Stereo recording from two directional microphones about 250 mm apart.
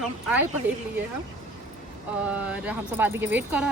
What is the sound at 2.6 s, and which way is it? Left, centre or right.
Speech, centre.